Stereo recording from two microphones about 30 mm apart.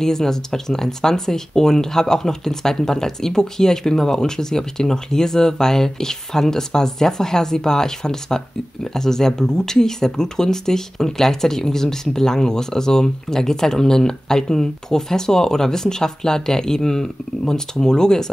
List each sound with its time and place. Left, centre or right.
0.0 s speech: centre